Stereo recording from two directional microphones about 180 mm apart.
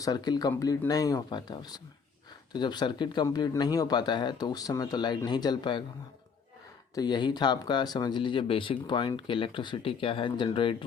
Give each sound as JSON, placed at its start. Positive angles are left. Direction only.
{"t": 0.0, "sound": "speech", "side_deg": 20}
{"t": 6.9, "sound": "speech", "side_deg": 25}